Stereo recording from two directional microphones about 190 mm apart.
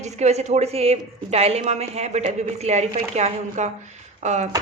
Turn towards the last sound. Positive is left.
turn(degrees=-35)  # may be behind; listen again after turning